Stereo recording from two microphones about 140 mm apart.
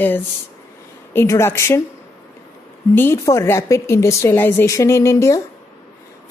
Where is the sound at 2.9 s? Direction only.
15° left (ahead or behind).